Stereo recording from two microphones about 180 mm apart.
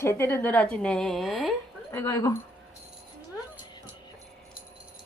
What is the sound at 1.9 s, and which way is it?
Speech, 20° left (ahead or behind).